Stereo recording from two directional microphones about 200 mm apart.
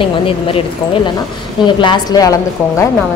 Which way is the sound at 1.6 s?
25° left (ahead or behind).